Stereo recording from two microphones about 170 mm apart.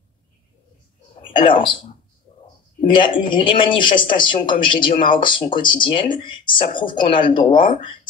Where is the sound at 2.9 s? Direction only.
30° left (ahead or behind).